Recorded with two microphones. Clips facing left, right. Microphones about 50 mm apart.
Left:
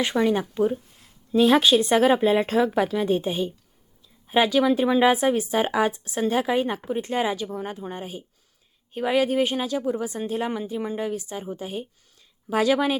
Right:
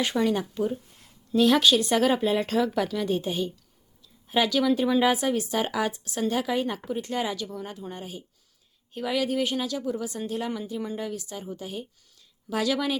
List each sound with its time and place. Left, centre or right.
0.0 s speech: centre